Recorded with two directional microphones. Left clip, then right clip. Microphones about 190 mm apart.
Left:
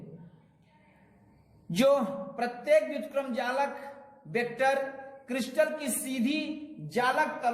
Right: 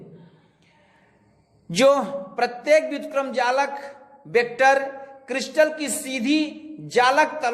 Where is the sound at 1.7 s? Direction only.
25° right (ahead or behind).